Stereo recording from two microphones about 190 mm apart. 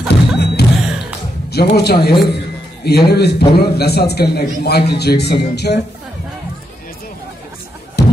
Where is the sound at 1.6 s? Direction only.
60° left (ahead or behind).